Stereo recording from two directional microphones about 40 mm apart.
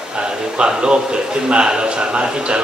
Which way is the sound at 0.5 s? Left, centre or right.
Right.